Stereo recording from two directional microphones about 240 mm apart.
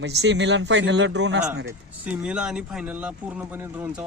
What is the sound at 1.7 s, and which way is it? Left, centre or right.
Speech, centre.